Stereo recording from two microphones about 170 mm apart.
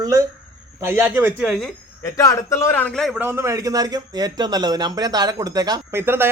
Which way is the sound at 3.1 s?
15° right (ahead or behind).